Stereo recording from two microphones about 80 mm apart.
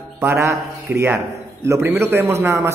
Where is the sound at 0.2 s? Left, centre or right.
Right.